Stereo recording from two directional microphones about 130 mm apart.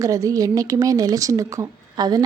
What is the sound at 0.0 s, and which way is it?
A woman's voice, 25° right (ahead or behind).